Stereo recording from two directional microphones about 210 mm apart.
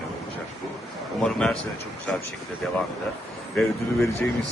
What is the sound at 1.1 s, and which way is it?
Speech, 5° left (ahead or behind).